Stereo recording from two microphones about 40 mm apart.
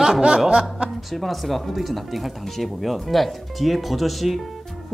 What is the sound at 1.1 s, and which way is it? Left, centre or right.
Speech, centre.